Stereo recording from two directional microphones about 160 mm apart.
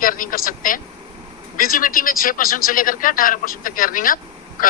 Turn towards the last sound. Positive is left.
turn(degrees=60)  # may be behind; listen again after turning